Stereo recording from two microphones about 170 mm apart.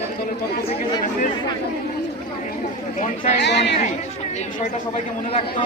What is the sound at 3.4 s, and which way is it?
Speech, 90° left.